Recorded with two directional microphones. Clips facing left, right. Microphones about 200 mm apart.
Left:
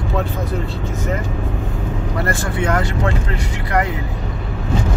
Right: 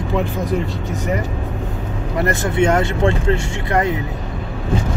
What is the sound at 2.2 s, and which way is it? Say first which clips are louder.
Speech: right 6 dB; 20° right (ahead or behind).